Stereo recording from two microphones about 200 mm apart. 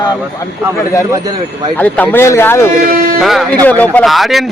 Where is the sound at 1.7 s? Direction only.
10° left (ahead or behind).